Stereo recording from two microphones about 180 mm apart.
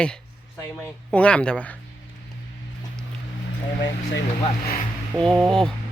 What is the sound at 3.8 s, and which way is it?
Speech, 80° left.